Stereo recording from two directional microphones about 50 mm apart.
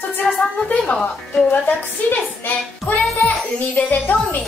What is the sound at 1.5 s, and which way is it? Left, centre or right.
A woman's voice, left.